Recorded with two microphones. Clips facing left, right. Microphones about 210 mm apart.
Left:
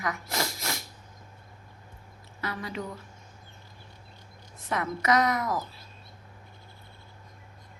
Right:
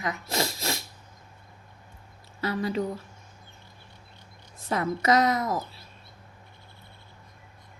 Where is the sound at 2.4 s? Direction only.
30° right (ahead or behind).